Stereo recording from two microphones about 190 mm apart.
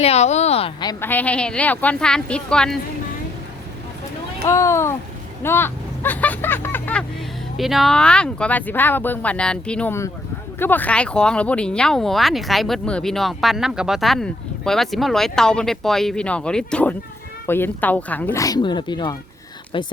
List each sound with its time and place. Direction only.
0.0 s a woman's voice: 35° left (ahead or behind)
1.0 s speech: 10° left (ahead or behind)
4.4 s speech: 15° left (ahead or behind)
7.5 s speech: centre (ahead or behind); by 19.9 s 25° left (ahead or behind)